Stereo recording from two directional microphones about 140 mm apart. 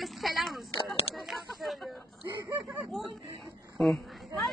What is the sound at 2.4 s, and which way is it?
Speech, 25° right (ahead or behind).